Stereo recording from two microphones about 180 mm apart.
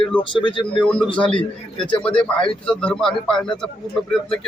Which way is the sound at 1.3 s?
30° left (ahead or behind).